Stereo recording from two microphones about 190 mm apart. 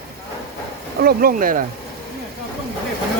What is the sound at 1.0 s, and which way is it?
Speech, 55° right (ahead or behind).